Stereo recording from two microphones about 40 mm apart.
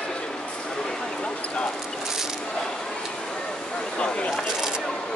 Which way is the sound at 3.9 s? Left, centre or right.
Left.